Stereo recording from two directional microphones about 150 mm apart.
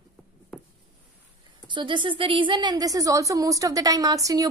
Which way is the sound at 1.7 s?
35° right (ahead or behind).